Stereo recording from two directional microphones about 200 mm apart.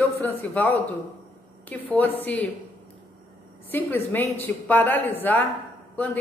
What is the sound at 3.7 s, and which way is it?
Speech, 10° left (ahead or behind).